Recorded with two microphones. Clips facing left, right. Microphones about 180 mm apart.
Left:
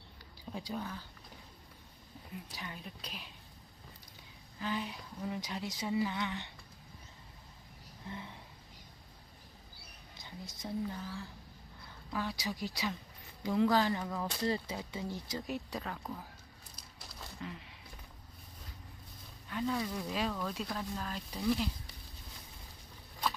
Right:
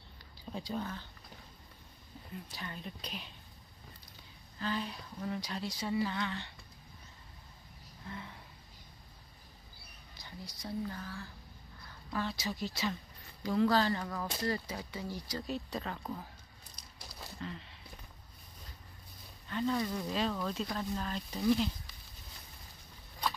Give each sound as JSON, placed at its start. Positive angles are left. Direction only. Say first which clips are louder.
{"t": 0.7, "sound": "a woman's voice", "louder": "right 3 dB", "side_deg": 5}
{"t": 2.4, "sound": "a woman's voice", "louder": "right 2 dB", "side_deg": 10}
{"t": 4.6, "sound": "a woman's voice", "louder": "right 1 dB", "side_deg": 15}
{"t": 10.2, "sound": "speech", "louder": "left 1 dB", "side_deg": 20}
{"t": 11.0, "sound": "a woman's voice", "louder": "left 1 dB", "side_deg": 10}
{"t": 14.4, "sound": "speech", "louder": "left 2 dB", "side_deg": 25}
{"t": 15.8, "sound": "speech", "louder": "right 2 dB", "side_deg": 0}
{"t": 17.4, "sound": "a sound", "louder": "right 1 dB", "side_deg": 10}
{"t": 19.5, "sound": "speech", "louder": "right 2 dB", "side_deg": 5}